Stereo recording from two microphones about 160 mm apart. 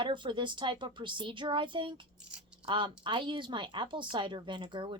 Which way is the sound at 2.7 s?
30° right (ahead or behind).